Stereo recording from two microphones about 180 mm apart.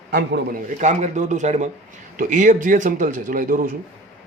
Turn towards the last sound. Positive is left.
turn(degrees=-50)  # may be behind; listen again after turning